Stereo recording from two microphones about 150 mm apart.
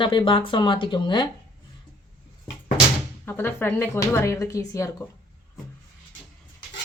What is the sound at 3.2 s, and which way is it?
Speech, 15° left (ahead or behind).